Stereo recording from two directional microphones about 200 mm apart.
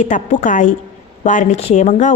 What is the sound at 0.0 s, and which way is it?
A woman's voice, 40° left (ahead or behind).